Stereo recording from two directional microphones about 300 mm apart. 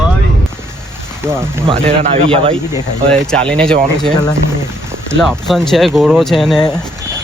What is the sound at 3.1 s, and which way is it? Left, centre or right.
Speech, centre.